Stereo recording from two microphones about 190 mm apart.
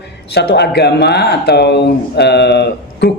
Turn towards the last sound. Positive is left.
turn(degrees=60)  # may be behind; listen again after turning